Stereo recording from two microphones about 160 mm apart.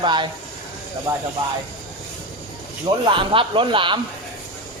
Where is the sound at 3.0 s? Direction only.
35° right (ahead or behind).